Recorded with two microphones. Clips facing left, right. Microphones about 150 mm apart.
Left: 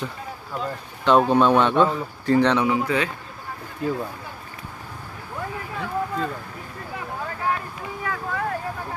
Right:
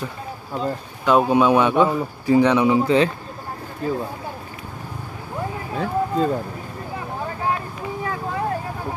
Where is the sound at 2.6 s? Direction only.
25° right (ahead or behind).